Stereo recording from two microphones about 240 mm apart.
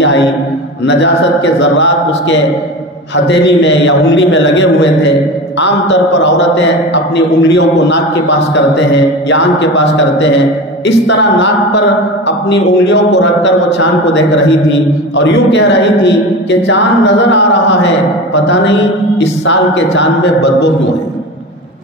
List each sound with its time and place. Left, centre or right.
0.8 s a man's voice: left